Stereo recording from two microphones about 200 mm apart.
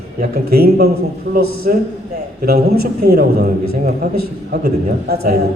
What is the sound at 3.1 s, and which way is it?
Speech, 50° right (ahead or behind).